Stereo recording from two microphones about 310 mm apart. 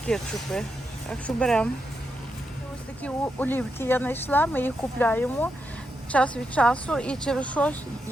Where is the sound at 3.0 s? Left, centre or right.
Centre.